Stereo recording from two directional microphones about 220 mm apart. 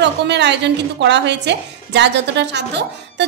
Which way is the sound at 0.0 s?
50° right (ahead or behind).